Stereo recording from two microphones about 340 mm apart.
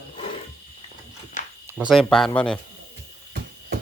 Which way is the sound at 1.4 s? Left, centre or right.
Left.